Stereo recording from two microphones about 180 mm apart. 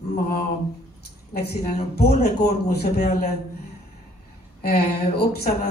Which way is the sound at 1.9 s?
60° left (ahead or behind).